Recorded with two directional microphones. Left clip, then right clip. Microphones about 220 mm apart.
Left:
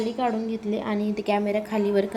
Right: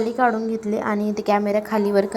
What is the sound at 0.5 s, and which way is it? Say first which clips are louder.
Speech: right 5 dB; 40° right (ahead or behind).